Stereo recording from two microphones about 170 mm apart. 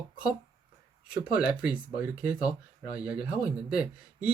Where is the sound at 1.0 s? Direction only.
5° right (ahead or behind).